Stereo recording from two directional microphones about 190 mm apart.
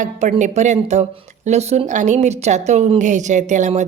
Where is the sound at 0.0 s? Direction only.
40° right (ahead or behind).